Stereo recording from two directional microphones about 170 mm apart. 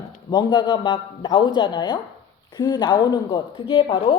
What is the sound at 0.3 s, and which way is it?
A woman's voice, 25° left (ahead or behind).